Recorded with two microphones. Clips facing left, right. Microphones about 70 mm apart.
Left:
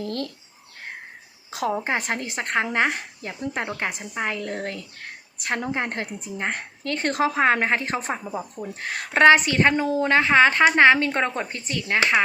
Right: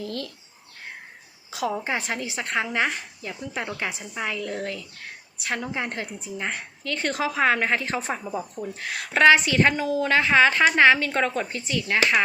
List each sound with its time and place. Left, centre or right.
0.0 s a woman's voice: left
1.5 s a woman's voice: left
8.2 s speech: centre
8.7 s a woman's voice: left